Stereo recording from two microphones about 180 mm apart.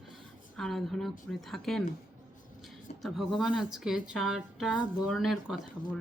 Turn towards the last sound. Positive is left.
turn(degrees=0)  # may be behind; listen again after turning